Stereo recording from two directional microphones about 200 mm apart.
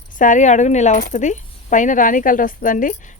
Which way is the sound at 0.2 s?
40° left (ahead or behind).